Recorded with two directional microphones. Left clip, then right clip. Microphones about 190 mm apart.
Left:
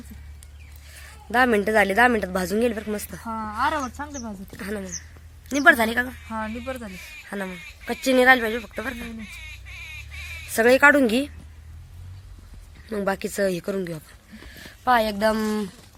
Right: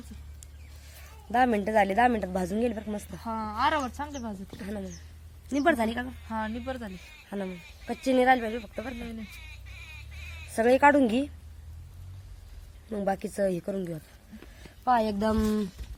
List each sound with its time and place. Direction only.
1.3 s a woman's voice: 5° left (ahead or behind); by 4.2 s 15° right (ahead or behind)
4.5 s a woman's voice: 5° left (ahead or behind)
6.2 s speech: 15° right (ahead or behind)
7.3 s a woman's voice: 5° left (ahead or behind)
10.5 s a woman's voice: centre (ahead or behind)
12.9 s a woman's voice: centre (ahead or behind)